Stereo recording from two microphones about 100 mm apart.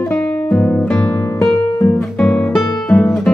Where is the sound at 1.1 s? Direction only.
20° left (ahead or behind).